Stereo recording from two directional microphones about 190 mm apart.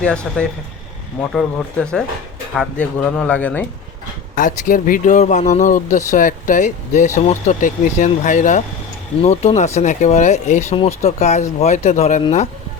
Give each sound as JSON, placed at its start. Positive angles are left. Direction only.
{"t": 0.0, "sound": "speech", "side_deg": 5}
{"t": 4.4, "sound": "speech", "side_deg": 45}